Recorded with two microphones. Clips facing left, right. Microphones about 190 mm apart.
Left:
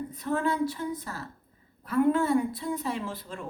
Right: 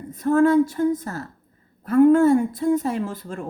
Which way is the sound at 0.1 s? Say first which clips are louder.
Right 14 dB; 45° right (ahead or behind).